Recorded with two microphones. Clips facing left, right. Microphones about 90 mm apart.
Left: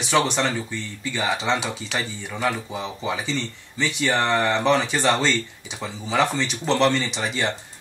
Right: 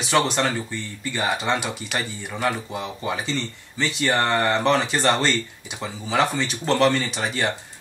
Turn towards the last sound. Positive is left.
turn(degrees=-5)  # may be behind; listen again after turning